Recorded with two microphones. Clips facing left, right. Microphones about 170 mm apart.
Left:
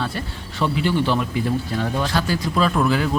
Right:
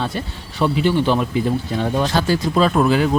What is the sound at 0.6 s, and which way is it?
Speech, 20° right (ahead or behind).